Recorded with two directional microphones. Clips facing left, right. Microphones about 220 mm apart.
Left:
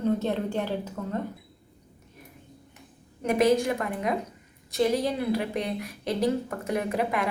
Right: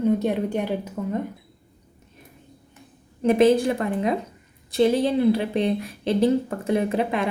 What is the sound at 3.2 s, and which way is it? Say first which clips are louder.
A woman's voice: right 5 dB; 30° right (ahead or behind).